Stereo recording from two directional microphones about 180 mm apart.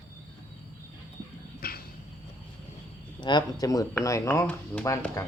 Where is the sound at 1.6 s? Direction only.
55° left (ahead or behind).